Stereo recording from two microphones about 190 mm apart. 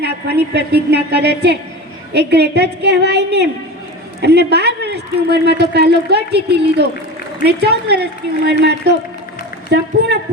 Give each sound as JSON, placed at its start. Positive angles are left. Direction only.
{"t": 0.0, "sound": "speech", "side_deg": -60}